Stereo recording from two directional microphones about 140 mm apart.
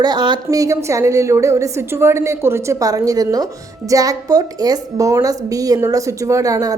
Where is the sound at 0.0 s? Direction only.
30° right (ahead or behind).